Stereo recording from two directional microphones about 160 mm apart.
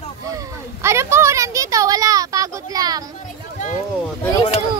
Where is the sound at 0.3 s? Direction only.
20° right (ahead or behind).